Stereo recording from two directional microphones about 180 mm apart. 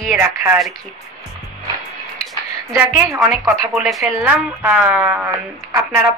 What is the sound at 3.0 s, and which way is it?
Speech, 20° right (ahead or behind).